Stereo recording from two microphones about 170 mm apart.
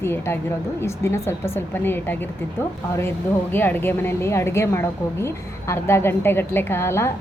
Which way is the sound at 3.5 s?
10° left (ahead or behind).